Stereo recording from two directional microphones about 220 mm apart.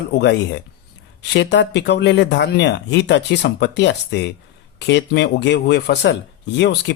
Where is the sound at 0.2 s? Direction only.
50° left (ahead or behind).